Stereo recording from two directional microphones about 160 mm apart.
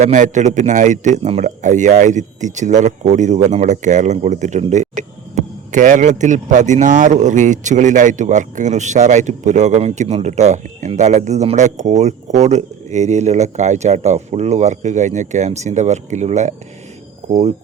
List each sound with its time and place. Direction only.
0.0 s speech: 50° right (ahead or behind)